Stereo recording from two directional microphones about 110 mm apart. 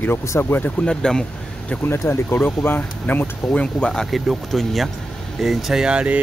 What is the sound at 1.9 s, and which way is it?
Speech, 20° left (ahead or behind).